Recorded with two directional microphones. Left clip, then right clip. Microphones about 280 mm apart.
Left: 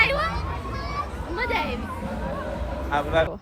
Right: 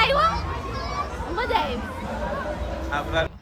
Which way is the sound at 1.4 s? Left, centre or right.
Centre.